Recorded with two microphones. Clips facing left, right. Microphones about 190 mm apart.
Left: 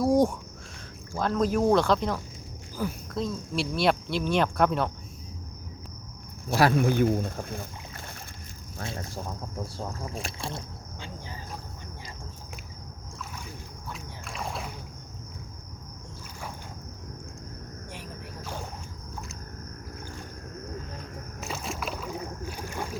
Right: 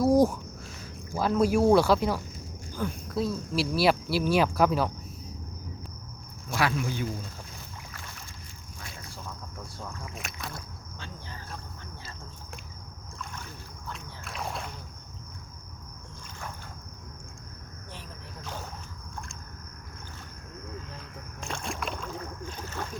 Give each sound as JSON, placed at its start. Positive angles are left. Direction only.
{"t": 0.0, "sound": "a sound", "side_deg": 0}
{"t": 1.1, "sound": "speech", "side_deg": -10}
{"t": 2.7, "sound": "speech", "side_deg": 5}
{"t": 3.2, "sound": "speech", "side_deg": -5}
{"t": 6.7, "sound": "speech", "side_deg": 55}
{"t": 9.0, "sound": "boat", "side_deg": 45}
{"t": 9.3, "sound": "speech", "side_deg": 35}
{"t": 13.8, "sound": "rowboat", "side_deg": 0}
{"t": 21.4, "sound": "boat", "side_deg": 5}